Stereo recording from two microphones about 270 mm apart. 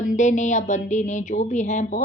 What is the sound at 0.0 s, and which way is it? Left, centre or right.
A woman's voice, left.